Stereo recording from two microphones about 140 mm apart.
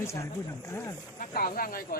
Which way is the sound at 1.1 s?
90° left.